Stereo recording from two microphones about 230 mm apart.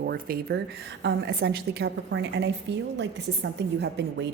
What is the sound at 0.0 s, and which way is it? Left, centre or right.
A woman's voice, right.